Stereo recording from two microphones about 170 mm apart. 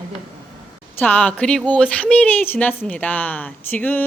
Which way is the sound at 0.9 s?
10° left (ahead or behind).